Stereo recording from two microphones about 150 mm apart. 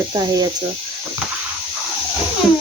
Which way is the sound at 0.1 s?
25° right (ahead or behind).